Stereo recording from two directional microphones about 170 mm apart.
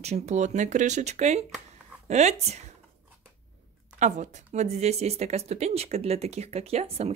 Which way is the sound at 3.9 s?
45° right (ahead or behind).